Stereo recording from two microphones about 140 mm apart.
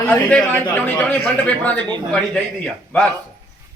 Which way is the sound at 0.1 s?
10° left (ahead or behind).